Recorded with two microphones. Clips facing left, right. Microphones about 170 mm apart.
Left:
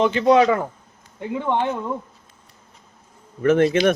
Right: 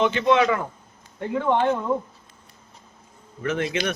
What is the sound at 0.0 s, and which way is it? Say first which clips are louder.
Speech: left 4 dB; 35° left (ahead or behind).